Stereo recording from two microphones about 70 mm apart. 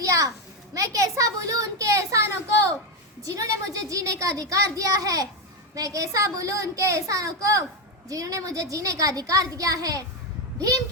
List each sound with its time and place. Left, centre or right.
0.0 s a sound: right
0.7 s speech: right
3.2 s a woman's voice: right